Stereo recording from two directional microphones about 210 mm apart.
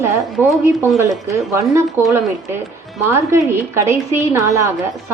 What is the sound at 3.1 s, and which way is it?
A woman's voice, 10° right (ahead or behind).